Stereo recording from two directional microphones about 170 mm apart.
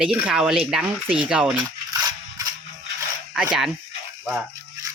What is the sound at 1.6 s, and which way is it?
Rattle, 20° right (ahead or behind).